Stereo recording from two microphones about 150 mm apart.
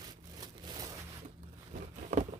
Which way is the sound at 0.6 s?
25° right (ahead or behind).